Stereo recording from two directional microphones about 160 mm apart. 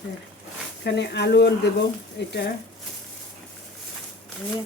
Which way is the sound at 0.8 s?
90° left.